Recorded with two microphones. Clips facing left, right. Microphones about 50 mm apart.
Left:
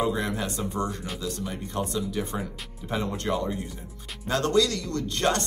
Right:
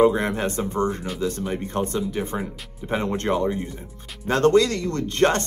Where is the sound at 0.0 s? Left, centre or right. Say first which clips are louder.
Right 8 dB; right.